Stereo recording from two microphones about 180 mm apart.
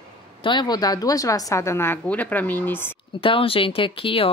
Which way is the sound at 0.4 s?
25° left (ahead or behind).